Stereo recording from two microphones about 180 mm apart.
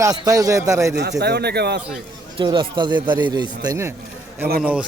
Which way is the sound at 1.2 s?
65° right (ahead or behind).